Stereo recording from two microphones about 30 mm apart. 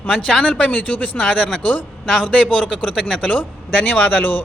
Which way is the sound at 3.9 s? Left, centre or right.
Left.